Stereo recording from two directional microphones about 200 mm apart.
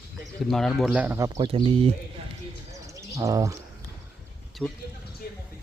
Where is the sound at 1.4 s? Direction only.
25° right (ahead or behind).